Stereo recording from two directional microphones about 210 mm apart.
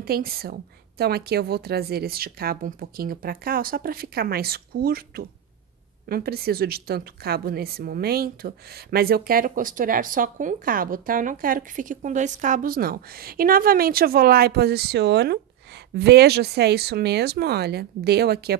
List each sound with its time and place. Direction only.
0.0 s a woman's voice: 45° right (ahead or behind)